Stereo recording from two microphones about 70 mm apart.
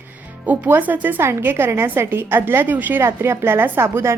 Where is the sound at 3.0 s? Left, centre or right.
Right.